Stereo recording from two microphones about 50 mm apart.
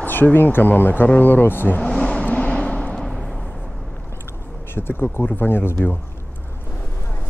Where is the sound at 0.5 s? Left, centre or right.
Left.